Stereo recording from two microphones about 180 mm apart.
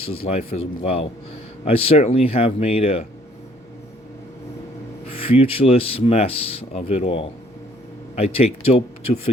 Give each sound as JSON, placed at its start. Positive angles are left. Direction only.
{"t": 0.0, "sound": "speech", "side_deg": 30}
{"t": 5.0, "sound": "speech", "side_deg": 30}